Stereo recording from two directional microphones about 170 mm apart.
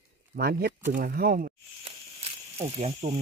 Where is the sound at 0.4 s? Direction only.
65° right (ahead or behind).